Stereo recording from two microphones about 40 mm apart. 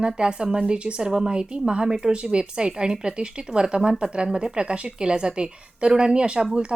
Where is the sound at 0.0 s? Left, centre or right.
Right.